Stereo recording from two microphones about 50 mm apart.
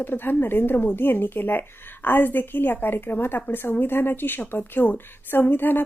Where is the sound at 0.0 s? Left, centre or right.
Left.